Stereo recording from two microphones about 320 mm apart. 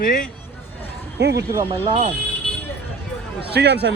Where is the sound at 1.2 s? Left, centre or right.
Right.